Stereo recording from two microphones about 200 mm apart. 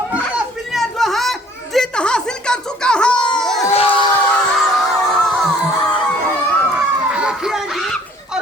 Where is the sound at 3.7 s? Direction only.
25° left (ahead or behind).